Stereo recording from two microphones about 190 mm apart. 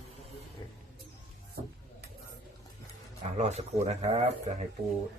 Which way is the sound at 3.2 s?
35° right (ahead or behind).